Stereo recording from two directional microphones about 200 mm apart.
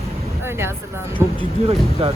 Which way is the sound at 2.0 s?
30° right (ahead or behind).